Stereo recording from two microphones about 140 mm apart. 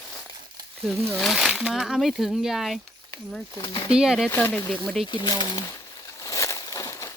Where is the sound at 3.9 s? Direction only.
5° right (ahead or behind).